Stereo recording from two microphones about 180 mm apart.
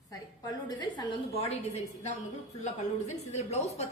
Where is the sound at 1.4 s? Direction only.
35° left (ahead or behind).